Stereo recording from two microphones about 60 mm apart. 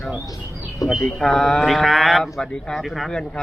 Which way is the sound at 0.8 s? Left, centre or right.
Left.